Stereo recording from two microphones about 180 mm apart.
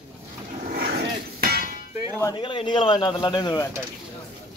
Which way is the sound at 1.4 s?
55° right (ahead or behind).